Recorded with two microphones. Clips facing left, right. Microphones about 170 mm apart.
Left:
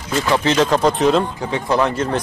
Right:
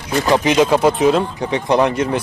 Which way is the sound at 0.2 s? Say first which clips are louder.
Right 3 dB; 15° right (ahead or behind).